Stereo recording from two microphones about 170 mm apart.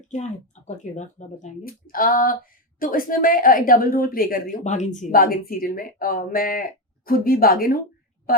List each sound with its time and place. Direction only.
0.1 s a woman's voice: 45° left (ahead or behind)